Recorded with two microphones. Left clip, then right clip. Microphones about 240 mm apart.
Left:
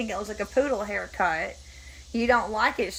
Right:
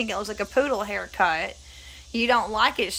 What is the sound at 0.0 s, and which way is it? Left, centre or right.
Speech, centre.